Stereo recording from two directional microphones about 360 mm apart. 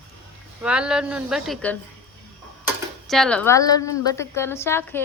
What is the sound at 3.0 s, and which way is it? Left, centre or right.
A woman's voice, centre.